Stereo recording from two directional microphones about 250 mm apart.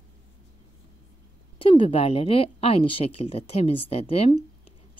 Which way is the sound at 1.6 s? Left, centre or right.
Left.